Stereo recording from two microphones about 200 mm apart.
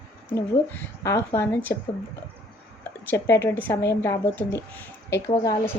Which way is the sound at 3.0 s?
15° left (ahead or behind).